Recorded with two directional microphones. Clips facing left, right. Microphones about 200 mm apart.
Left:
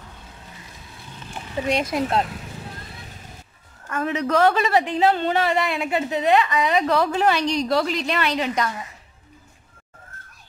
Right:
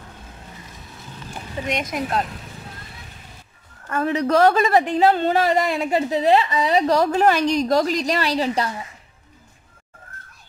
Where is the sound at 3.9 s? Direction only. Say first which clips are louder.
Right 3 dB; 35° right (ahead or behind).